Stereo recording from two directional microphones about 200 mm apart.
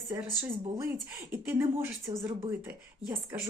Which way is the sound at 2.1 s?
20° right (ahead or behind).